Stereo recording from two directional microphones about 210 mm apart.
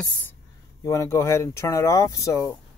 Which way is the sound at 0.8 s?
15° left (ahead or behind).